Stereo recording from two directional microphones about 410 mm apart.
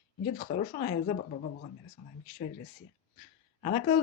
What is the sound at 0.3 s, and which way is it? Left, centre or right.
Speech, left.